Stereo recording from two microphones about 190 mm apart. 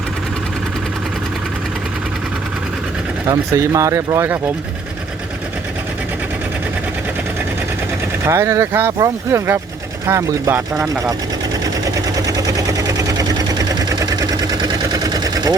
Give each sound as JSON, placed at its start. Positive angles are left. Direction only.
{"t": 3.2, "sound": "speech", "side_deg": -15}
{"t": 8.2, "sound": "speech", "side_deg": -15}
{"t": 11.9, "sound": "sewing machine", "side_deg": -20}